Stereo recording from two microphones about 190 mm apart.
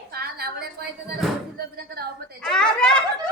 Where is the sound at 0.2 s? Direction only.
55° right (ahead or behind).